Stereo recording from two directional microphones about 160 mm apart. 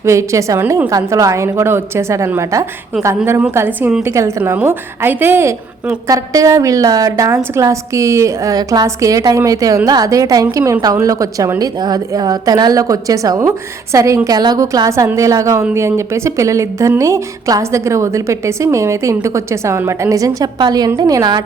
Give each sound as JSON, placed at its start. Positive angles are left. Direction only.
{"t": 0.0, "sound": "a woman's voice", "side_deg": -20}